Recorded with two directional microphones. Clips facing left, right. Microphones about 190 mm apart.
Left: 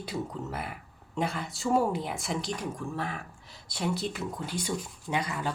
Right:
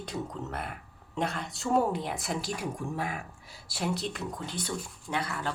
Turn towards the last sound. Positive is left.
turn(degrees=15)  # may be behind; listen again after turning